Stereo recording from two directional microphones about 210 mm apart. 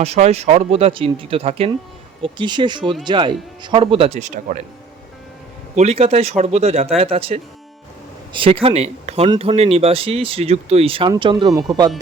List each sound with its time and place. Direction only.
0.0 s speech: 30° right (ahead or behind)
5.7 s speech: 30° right (ahead or behind)